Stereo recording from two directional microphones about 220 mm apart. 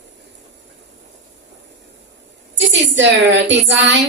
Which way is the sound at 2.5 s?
55° right (ahead or behind).